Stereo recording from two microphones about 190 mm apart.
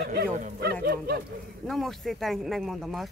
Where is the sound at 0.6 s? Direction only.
55° right (ahead or behind).